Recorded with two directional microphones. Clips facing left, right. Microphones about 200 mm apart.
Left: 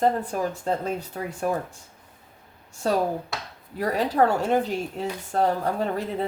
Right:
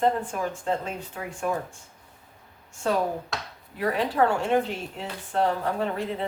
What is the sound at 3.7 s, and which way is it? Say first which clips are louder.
Speech: left 2 dB; 40° left (ahead or behind).